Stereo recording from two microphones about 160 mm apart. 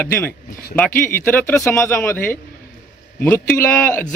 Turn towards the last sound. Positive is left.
turn(degrees=15)  # may be behind; listen again after turning